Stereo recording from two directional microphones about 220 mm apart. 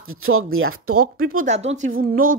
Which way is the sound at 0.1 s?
75° right (ahead or behind).